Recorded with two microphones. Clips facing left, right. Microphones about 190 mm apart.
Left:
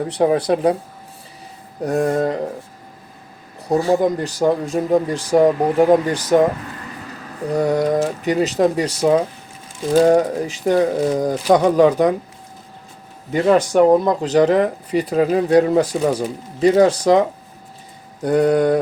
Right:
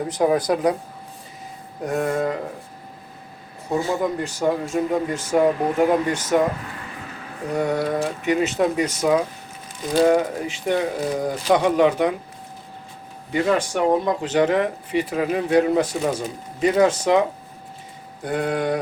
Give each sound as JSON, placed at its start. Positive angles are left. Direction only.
{"t": 0.1, "sound": "speech", "side_deg": 30}
{"t": 1.8, "sound": "speech", "side_deg": 35}
{"t": 3.7, "sound": "speech", "side_deg": 35}
{"t": 7.5, "sound": "speech", "side_deg": 35}
{"t": 13.3, "sound": "speech", "side_deg": 40}